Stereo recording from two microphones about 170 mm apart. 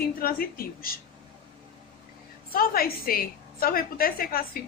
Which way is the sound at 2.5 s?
60° left (ahead or behind).